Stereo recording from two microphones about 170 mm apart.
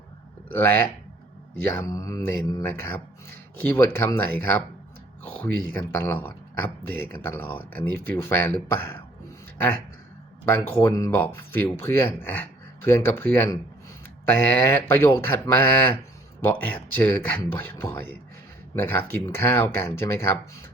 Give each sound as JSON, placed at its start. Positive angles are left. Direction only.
{"t": 0.4, "sound": "speech", "side_deg": 10}
{"t": 10.4, "sound": "speech", "side_deg": 10}